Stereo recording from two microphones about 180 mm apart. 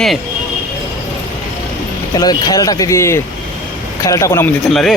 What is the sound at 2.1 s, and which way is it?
A man's voice, 20° left (ahead or behind).